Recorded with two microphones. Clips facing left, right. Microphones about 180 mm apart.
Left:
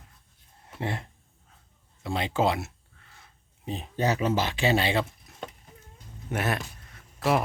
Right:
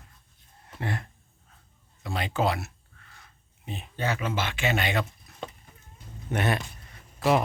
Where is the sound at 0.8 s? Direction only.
25° left (ahead or behind).